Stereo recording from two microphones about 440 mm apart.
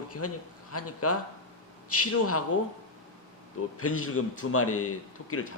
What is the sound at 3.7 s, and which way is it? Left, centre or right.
Speech, left.